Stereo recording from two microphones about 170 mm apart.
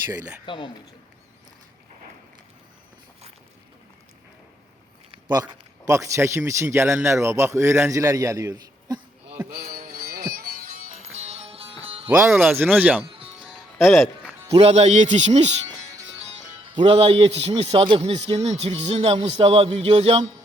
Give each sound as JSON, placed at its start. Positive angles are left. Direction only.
{"t": 0.4, "sound": "a man's voice", "side_deg": 30}
{"t": 5.3, "sound": "a man's voice", "side_deg": -20}
{"t": 9.5, "sound": "music", "side_deg": -60}
{"t": 11.0, "sound": "music", "side_deg": -40}
{"t": 12.3, "sound": "speech", "side_deg": 0}
{"t": 12.5, "sound": "a man's voice", "side_deg": -10}
{"t": 13.4, "sound": "music", "side_deg": 0}
{"t": 14.5, "sound": "speech", "side_deg": -40}
{"t": 16.7, "sound": "a man's voice", "side_deg": -35}